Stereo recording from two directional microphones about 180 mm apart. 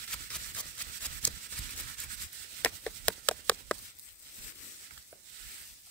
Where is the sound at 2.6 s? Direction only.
5° left (ahead or behind).